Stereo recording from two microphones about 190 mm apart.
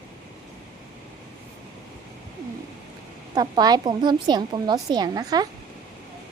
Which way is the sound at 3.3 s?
20° right (ahead or behind).